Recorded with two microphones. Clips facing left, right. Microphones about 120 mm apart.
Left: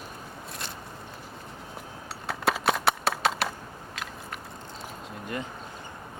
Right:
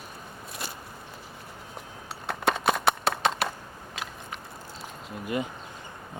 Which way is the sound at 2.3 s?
Centre (ahead or behind).